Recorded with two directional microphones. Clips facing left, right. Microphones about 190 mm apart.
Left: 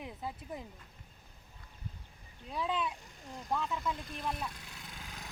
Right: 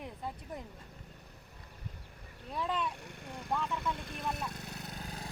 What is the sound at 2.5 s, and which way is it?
Speech, centre (ahead or behind).